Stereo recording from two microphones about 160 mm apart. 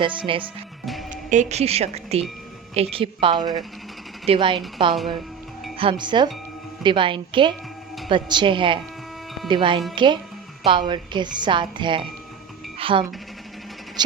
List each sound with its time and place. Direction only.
0.0 s a woman's voice: 30° right (ahead or behind)
1.1 s a woman's voice: 50° right (ahead or behind); by 4.6 s 30° right (ahead or behind)
5.7 s a woman's voice: 35° right (ahead or behind)